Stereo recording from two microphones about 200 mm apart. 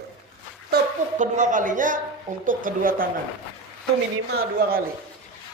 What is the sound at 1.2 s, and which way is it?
A man's voice, 40° right (ahead or behind).